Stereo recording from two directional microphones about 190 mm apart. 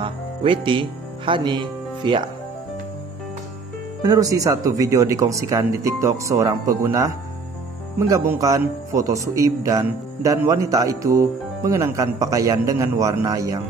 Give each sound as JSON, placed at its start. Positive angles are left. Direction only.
{"t": 0.0, "sound": "speech", "side_deg": -25}
{"t": 4.0, "sound": "speech", "side_deg": -20}
{"t": 8.1, "sound": "speech", "side_deg": -15}